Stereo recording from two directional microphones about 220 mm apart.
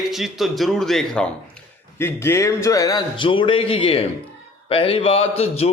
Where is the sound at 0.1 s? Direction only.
Centre (ahead or behind).